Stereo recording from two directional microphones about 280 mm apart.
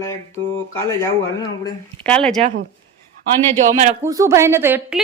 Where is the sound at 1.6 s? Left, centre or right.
Centre.